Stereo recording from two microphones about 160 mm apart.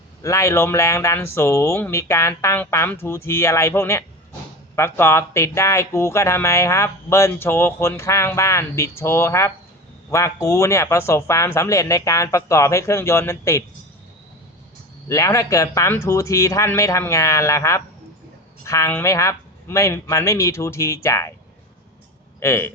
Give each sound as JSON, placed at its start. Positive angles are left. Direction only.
{"t": 0.2, "sound": "speech", "side_deg": 20}
{"t": 15.0, "sound": "speech", "side_deg": 20}
{"t": 22.4, "sound": "speech", "side_deg": 15}